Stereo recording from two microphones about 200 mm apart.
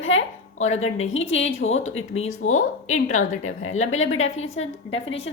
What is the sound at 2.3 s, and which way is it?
Speech, 90° left.